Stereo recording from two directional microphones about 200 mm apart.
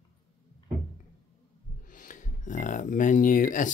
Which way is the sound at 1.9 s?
40° left (ahead or behind).